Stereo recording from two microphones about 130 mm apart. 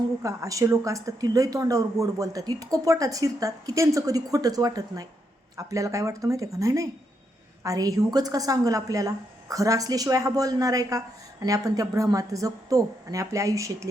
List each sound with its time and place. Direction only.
0.2 s a woman's voice: 25° right (ahead or behind)